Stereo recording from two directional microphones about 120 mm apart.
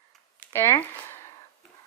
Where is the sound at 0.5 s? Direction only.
20° left (ahead or behind).